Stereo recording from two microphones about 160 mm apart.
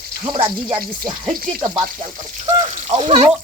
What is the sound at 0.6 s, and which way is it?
Speech, 30° right (ahead or behind).